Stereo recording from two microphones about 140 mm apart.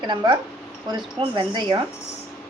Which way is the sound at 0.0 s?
35° right (ahead or behind).